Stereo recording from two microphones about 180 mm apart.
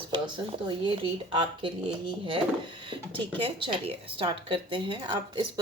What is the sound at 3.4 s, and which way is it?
Speech, 30° right (ahead or behind).